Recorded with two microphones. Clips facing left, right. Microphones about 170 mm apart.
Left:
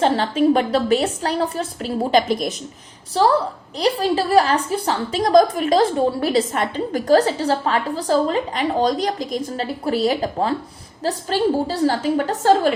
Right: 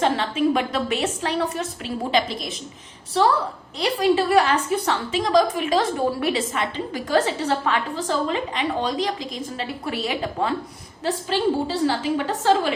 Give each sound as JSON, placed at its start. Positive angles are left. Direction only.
{"t": 0.0, "sound": "a woman's voice", "side_deg": 35}
{"t": 3.1, "sound": "a woman's voice", "side_deg": 35}